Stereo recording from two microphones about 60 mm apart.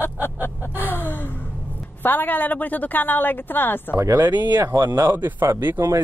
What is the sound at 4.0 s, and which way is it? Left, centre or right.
Speech, right.